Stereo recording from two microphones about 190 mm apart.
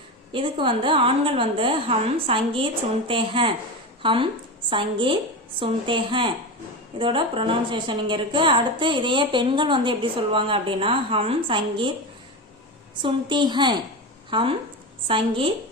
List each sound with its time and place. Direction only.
0.3 s a woman's voice: 25° right (ahead or behind)
13.0 s a woman's voice: 25° right (ahead or behind)